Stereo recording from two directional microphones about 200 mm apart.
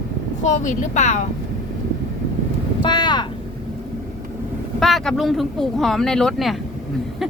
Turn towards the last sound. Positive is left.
turn(degrees=0)  # may be behind; listen again after turning